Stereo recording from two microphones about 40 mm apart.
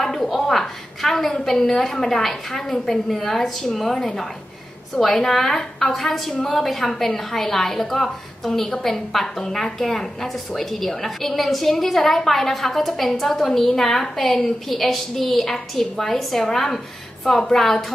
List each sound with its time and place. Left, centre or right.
0.0 s a woman's voice: centre